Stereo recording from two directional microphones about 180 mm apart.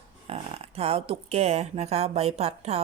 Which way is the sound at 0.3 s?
35° right (ahead or behind).